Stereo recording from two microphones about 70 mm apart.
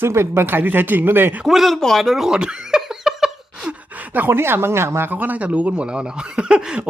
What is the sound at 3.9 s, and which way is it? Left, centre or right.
Speech, right.